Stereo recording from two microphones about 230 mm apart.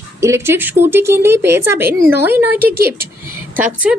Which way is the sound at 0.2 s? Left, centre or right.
Centre.